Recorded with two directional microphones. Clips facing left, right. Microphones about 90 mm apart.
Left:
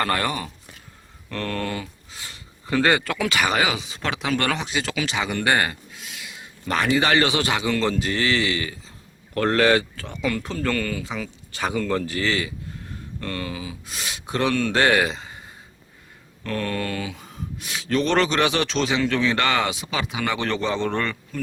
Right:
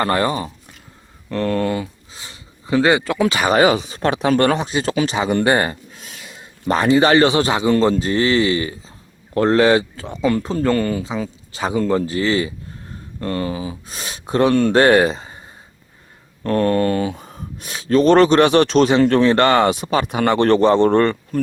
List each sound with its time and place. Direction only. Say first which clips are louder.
0.0 s speech: right 5 dB; 25° right (ahead or behind)
16.4 s speech: right 10 dB; 35° right (ahead or behind)